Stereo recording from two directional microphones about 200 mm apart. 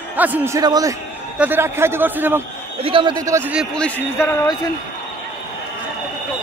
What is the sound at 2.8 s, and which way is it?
Speech, 25° right (ahead or behind).